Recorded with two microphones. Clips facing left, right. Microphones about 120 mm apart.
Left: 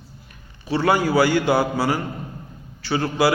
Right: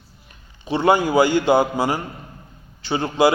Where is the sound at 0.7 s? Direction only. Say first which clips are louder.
Right 2 dB; 20° right (ahead or behind).